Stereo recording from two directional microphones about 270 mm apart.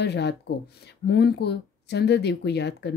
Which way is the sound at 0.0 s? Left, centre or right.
Left.